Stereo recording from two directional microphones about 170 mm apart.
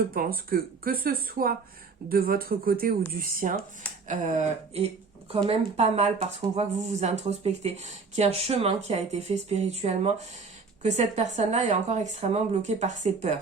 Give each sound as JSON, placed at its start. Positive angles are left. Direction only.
{"t": 0.1, "sound": "speech", "side_deg": -60}
{"t": 4.1, "sound": "speech", "side_deg": -45}